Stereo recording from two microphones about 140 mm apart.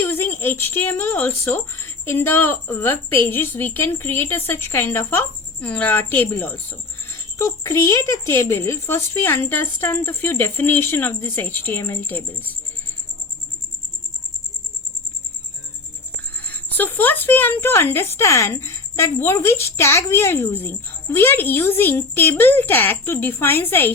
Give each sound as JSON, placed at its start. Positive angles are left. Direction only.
{"t": 0.0, "sound": "speech", "side_deg": 15}
{"t": 16.3, "sound": "speech", "side_deg": 10}